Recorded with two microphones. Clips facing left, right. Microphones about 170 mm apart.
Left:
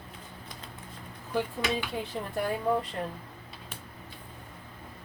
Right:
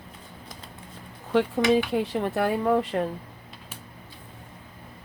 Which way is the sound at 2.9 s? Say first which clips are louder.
Right 8 dB; 90° right.